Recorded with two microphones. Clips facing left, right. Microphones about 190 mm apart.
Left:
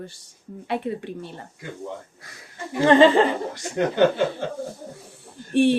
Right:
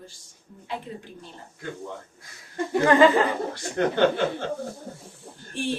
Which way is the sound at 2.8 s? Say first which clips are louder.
Left 3 dB; 25° left (ahead or behind).